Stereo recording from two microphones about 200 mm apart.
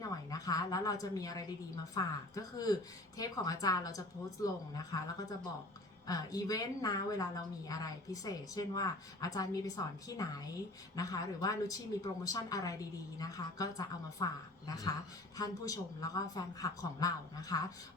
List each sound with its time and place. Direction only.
0.0 s a woman's voice: 20° left (ahead or behind)
6.1 s speech: 20° left (ahead or behind)
15.4 s a woman's voice: 20° left (ahead or behind)